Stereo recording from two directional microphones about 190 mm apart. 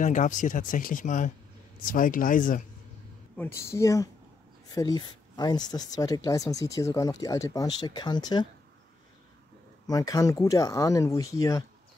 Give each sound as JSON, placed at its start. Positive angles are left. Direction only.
{"t": 0.0, "sound": "speech", "side_deg": 40}
{"t": 3.3, "sound": "speech", "side_deg": 15}
{"t": 9.8, "sound": "speech", "side_deg": 20}